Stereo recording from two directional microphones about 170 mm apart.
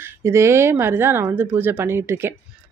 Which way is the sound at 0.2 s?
15° right (ahead or behind).